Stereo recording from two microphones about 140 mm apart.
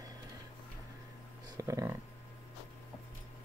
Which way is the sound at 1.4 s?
25° right (ahead or behind).